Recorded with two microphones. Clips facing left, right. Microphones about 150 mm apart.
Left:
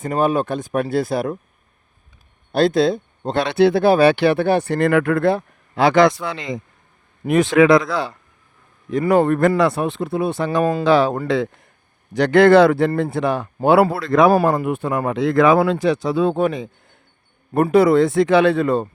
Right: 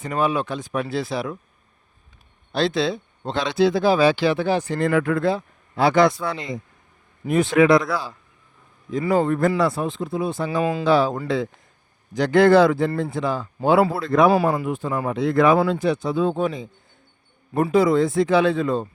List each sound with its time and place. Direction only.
0.0 s speech: 50° left (ahead or behind)
2.5 s speech: 50° left (ahead or behind); by 6.1 s 90° left
7.3 s speech: 90° left
7.9 s speech: 75° left (ahead or behind)
10.6 s speech: 50° left (ahead or behind)
10.8 s speech: 85° left
12.1 s speech: 70° left (ahead or behind)
14.6 s speech: 60° left (ahead or behind)